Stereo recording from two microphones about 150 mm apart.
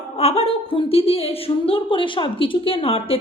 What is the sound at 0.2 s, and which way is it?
Speech, 45° left (ahead or behind).